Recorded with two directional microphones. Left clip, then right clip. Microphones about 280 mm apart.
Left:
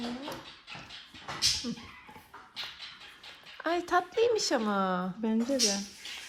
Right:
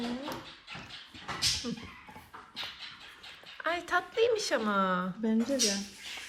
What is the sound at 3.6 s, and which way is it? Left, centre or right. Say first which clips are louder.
Speech: left 2 dB; centre.